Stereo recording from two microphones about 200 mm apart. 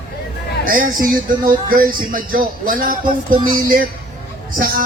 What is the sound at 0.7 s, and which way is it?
Speech, 45° right (ahead or behind).